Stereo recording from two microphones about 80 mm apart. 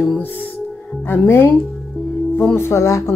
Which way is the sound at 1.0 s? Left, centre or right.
Left.